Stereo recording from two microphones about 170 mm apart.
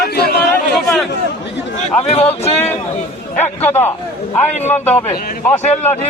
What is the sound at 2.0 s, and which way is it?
Speech, 35° left (ahead or behind).